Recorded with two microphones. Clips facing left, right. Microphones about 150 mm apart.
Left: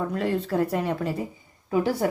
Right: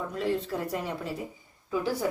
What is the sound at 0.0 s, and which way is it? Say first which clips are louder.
A woman's voice: left 4 dB; 60° left (ahead or behind).